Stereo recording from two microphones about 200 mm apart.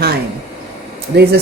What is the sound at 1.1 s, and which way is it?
Speech, 55° right (ahead or behind).